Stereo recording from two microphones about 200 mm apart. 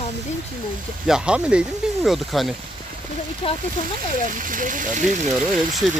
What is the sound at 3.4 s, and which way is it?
Speech, 30° left (ahead or behind).